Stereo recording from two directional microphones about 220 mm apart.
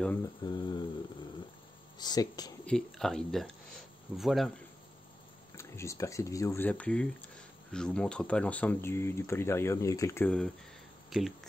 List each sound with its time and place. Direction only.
0.0 s speech: 10° left (ahead or behind)
2.0 s speech: 20° left (ahead or behind)
2.6 s speech: 5° left (ahead or behind)
5.6 s speech: 15° left (ahead or behind); by 11.3 s 5° right (ahead or behind)